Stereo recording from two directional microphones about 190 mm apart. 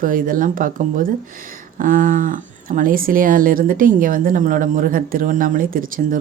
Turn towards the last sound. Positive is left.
turn(degrees=-45)  # may be behind; listen again after turning